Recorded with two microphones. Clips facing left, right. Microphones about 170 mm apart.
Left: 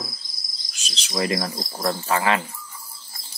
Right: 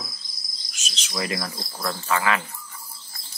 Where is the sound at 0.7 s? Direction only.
35° left (ahead or behind).